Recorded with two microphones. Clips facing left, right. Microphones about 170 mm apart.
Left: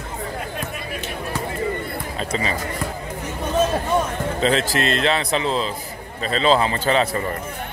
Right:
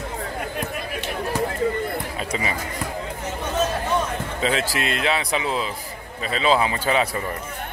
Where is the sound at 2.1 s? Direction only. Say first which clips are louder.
Left 2 dB; 10° right (ahead or behind).